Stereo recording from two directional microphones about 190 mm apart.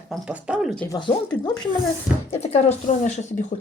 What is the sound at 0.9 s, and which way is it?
Speech, 25° left (ahead or behind).